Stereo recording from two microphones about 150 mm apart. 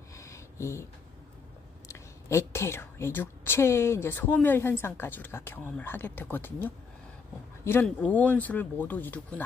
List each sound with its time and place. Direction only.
0.1 s a sound: 20° left (ahead or behind)
1.9 s a woman's voice: 20° left (ahead or behind)
7.8 s a woman's voice: 10° left (ahead or behind)